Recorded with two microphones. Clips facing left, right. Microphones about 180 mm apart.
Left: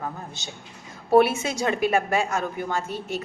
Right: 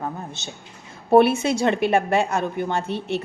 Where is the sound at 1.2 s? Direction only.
60° right (ahead or behind).